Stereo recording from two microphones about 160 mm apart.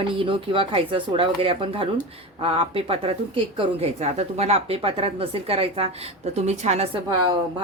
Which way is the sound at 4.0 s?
45° right (ahead or behind).